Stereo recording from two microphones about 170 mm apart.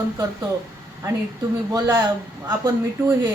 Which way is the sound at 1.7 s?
20° right (ahead or behind).